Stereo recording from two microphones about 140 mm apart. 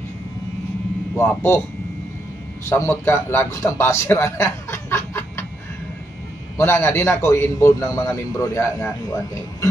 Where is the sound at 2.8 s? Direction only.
20° left (ahead or behind).